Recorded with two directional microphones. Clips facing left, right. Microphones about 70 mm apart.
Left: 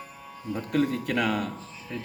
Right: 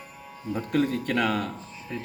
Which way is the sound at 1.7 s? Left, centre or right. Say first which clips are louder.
Right 1 dB; centre.